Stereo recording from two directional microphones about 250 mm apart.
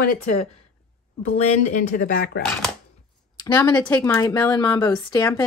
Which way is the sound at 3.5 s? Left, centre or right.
Centre.